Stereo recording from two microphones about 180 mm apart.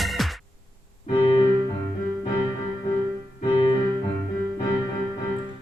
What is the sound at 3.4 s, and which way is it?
Music, 25° left (ahead or behind).